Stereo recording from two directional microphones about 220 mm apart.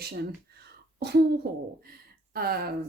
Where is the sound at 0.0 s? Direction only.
45° right (ahead or behind).